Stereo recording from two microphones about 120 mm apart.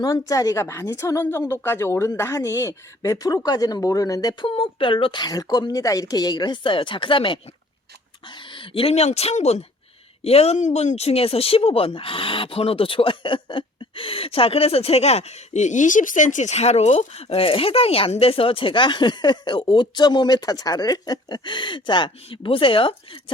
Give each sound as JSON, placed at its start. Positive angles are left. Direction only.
{"t": 0.0, "sound": "a woman's voice", "side_deg": 30}
{"t": 4.4, "sound": "a woman's voice", "side_deg": 50}